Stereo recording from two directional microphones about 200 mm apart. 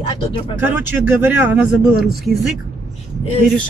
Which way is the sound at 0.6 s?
10° right (ahead or behind).